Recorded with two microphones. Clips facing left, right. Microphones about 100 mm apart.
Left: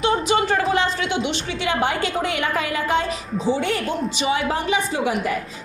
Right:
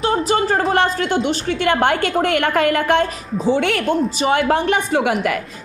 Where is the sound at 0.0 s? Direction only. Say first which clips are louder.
Right 2 dB; 40° right (ahead or behind).